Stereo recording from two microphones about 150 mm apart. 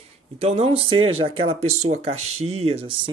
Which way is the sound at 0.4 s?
40° right (ahead or behind).